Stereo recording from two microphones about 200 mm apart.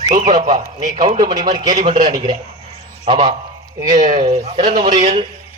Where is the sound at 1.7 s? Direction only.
40° right (ahead or behind).